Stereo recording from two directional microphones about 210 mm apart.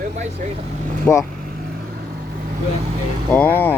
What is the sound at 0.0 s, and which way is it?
Speech, 35° right (ahead or behind).